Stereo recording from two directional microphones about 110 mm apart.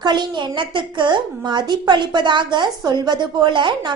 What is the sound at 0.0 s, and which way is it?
A woman's voice, 45° right (ahead or behind).